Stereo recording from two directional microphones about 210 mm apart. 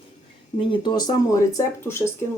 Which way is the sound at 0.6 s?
20° left (ahead or behind).